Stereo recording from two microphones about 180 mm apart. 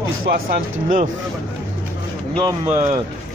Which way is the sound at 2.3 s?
25° right (ahead or behind).